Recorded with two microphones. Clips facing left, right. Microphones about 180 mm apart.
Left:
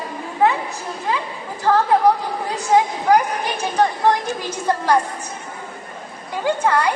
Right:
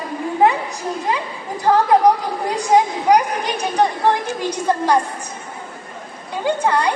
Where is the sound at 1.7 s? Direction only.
25° right (ahead or behind).